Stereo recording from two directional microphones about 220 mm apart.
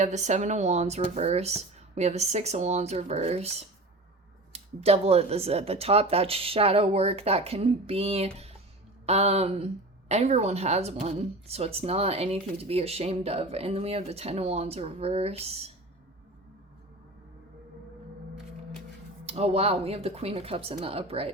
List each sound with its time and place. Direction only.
0.0 s a woman's voice: 30° right (ahead or behind)
19.2 s a woman's voice: 30° right (ahead or behind)